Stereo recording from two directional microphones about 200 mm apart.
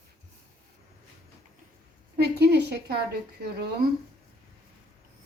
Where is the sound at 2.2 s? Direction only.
55° right (ahead or behind).